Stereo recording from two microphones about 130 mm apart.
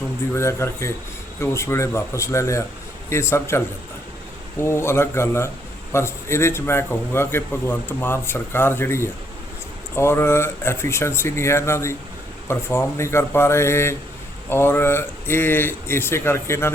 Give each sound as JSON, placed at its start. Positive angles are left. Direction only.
{"t": 0.3, "sound": "a man's voice", "side_deg": 20}
{"t": 4.6, "sound": "a man's voice", "side_deg": 20}